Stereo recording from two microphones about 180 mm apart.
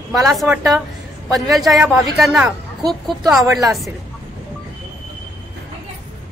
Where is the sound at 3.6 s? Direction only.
Centre (ahead or behind).